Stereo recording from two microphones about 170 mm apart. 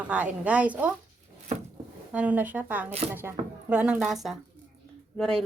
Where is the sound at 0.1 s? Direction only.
10° right (ahead or behind).